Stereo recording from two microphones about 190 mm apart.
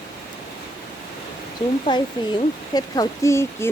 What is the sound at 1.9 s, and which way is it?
Speech, 25° left (ahead or behind).